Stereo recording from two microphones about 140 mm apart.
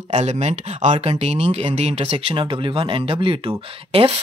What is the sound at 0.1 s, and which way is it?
Speech, 55° right (ahead or behind).